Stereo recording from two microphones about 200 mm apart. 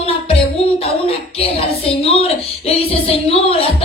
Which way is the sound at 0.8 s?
30° left (ahead or behind).